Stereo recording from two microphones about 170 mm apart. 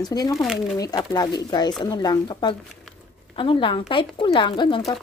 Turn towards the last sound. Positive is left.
turn(degrees=30)  # may be behind; listen again after turning